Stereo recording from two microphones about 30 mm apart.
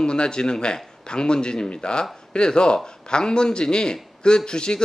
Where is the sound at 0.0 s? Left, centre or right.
Left.